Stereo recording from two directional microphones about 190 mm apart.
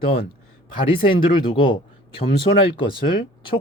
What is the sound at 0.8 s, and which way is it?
Speech, 30° left (ahead or behind).